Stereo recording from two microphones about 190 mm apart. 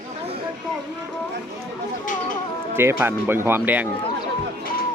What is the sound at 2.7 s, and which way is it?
Speech, 10° right (ahead or behind).